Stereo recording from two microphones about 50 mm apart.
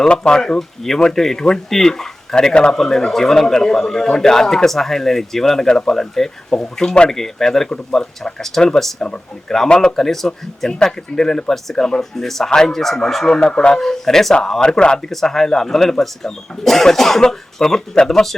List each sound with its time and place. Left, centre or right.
0.1 s a man's voice: left
9.0 s a man's voice: centre
10.7 s a man's voice: centre
14.6 s a man's voice: centre